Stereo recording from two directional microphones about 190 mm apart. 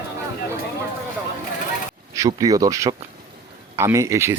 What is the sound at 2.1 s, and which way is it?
Speech, 20° right (ahead or behind).